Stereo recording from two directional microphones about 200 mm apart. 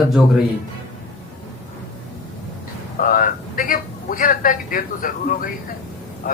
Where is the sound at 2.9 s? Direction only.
45° left (ahead or behind).